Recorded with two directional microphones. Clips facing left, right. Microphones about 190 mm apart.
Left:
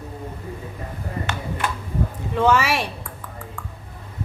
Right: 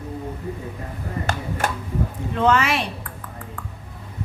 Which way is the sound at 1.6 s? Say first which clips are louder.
Right 2 dB; 45° right (ahead or behind).